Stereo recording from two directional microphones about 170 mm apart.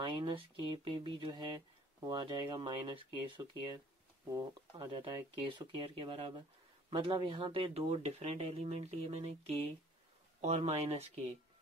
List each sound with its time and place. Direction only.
0.0 s speech: 30° right (ahead or behind)